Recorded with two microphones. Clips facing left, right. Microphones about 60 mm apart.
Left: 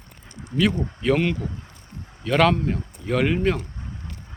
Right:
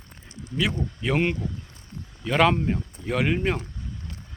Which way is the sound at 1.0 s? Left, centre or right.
Centre.